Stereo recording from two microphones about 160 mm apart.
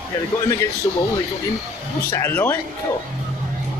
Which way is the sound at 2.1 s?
15° left (ahead or behind).